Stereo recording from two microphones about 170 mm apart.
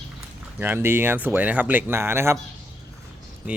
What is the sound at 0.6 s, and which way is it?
Speech, 10° right (ahead or behind).